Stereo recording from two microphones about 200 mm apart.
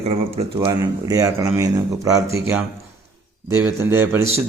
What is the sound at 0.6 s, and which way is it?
Speech, 20° right (ahead or behind).